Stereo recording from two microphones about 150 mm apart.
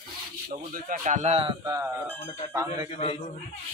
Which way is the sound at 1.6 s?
15° right (ahead or behind).